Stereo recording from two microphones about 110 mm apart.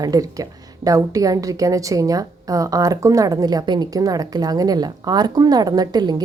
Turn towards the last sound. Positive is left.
turn(degrees=-40)  # may be behind; listen again after turning